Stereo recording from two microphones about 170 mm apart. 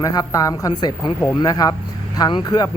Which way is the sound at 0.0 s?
20° left (ahead or behind).